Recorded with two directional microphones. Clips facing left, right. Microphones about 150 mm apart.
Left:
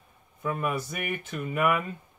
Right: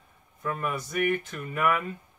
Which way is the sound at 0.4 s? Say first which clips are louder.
Left 2 dB; 10° left (ahead or behind).